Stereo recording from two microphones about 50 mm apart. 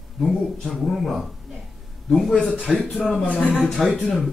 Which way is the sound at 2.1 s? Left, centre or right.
Centre.